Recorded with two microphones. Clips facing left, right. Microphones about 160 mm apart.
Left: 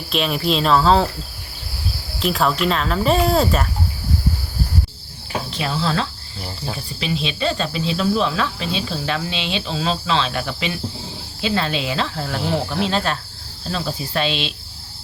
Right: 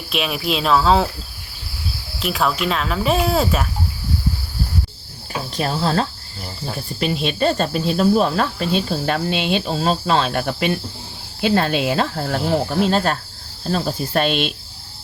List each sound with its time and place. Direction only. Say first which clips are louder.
0.1 s speech: left 2 dB; 5° right (ahead or behind)
2.1 s speech: left 1 dB; 5° right (ahead or behind)
5.5 s cricket: right 3 dB; 40° right (ahead or behind)